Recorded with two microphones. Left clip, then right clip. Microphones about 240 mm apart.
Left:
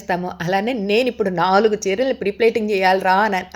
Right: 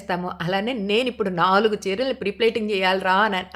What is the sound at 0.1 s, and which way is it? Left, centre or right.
Speech, centre.